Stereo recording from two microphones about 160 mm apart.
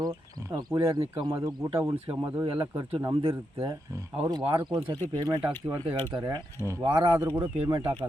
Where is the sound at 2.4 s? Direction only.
30° right (ahead or behind).